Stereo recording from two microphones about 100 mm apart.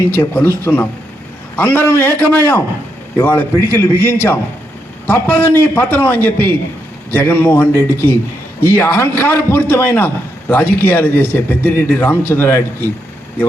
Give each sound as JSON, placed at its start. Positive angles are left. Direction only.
{"t": 0.2, "sound": "a man's voice", "side_deg": 20}